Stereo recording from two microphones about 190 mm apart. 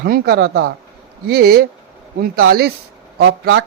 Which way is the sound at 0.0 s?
55° right (ahead or behind).